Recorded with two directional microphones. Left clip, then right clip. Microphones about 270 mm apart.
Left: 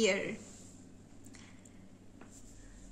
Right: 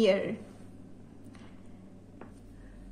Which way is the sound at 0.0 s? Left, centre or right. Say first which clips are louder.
Right 5 dB; left.